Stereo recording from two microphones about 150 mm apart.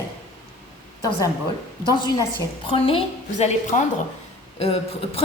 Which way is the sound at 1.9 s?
30° left (ahead or behind).